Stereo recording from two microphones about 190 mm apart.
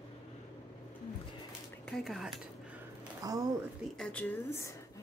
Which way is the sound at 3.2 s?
20° right (ahead or behind).